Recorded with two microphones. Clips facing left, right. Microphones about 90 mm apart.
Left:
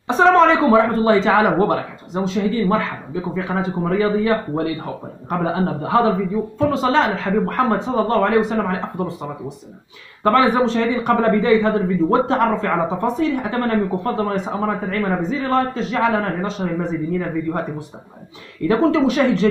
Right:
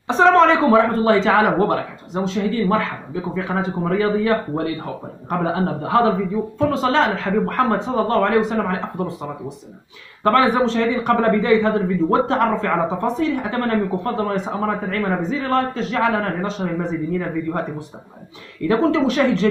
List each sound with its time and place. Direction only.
0.1 s a man's voice: 10° left (ahead or behind)
10.2 s a man's voice: 5° left (ahead or behind)
18.6 s speech: 15° left (ahead or behind)
18.9 s speech: 5° left (ahead or behind)